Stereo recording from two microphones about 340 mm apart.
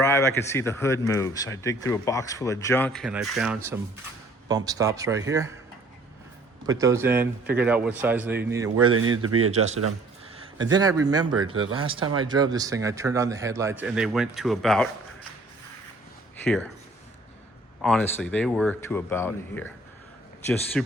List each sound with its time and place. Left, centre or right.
0.0 s a man's voice: centre
6.7 s a man's voice: centre
8.9 s speech: right
9.4 s a man's voice: centre
16.4 s speech: centre
17.8 s speech: centre
20.8 s speech: centre